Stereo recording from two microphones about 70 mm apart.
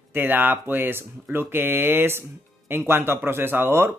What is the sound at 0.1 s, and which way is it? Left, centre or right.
Speech, right.